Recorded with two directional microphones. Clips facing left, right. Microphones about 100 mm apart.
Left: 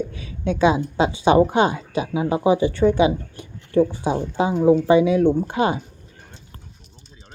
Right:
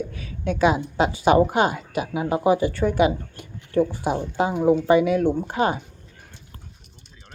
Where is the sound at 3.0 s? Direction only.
20° left (ahead or behind).